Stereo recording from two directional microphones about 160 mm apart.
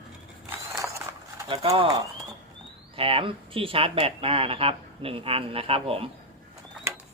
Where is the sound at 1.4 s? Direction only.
35° right (ahead or behind).